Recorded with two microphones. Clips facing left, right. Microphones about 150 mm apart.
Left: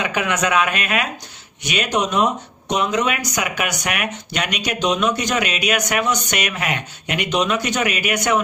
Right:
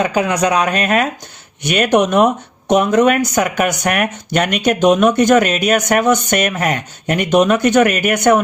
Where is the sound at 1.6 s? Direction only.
55° right (ahead or behind).